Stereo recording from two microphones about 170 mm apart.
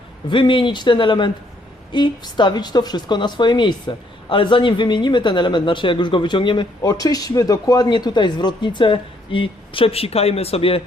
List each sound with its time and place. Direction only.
0.3 s a woman's voice: 30° left (ahead or behind)